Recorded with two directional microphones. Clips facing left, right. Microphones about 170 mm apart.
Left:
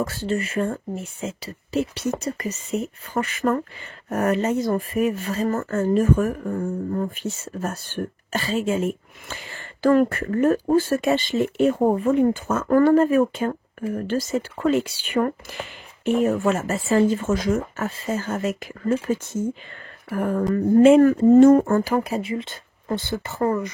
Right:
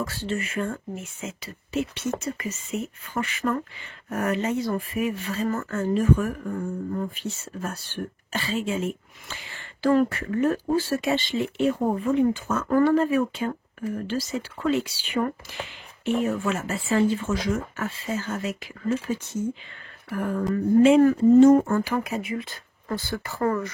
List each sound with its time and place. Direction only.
0.0 s speech: 40° left (ahead or behind); by 23.7 s 20° left (ahead or behind)